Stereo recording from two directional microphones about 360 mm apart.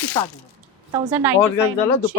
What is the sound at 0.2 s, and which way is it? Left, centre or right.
Speech, centre.